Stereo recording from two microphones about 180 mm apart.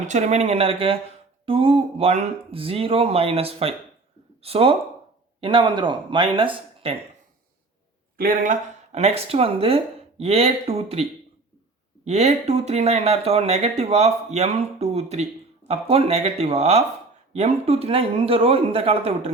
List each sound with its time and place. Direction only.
0.1 s speech: 40° right (ahead or behind)
8.2 s speech: 45° right (ahead or behind)
12.0 s speech: 35° right (ahead or behind)